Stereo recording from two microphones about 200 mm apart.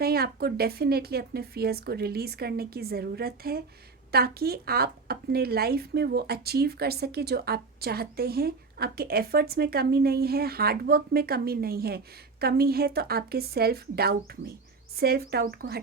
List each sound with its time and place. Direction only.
0.0 s speech: 50° right (ahead or behind)